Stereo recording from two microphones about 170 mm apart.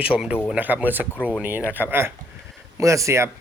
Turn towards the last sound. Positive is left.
turn(degrees=-15)  # may be behind; listen again after turning